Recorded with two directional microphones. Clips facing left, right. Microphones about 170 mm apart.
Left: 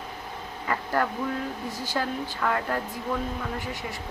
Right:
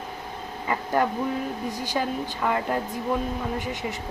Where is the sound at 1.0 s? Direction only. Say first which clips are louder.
Right 4 dB; 20° right (ahead or behind).